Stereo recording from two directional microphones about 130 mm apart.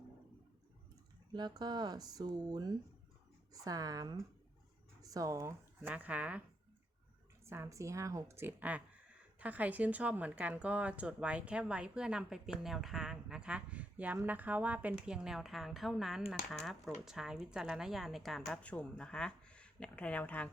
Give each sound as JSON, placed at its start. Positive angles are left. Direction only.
{"t": 1.3, "sound": "a woman's voice", "side_deg": -35}
{"t": 5.9, "sound": "speech", "side_deg": -10}
{"t": 7.4, "sound": "a woman's voice", "side_deg": -20}